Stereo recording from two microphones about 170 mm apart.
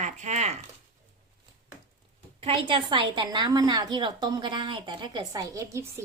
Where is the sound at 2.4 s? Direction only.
30° right (ahead or behind).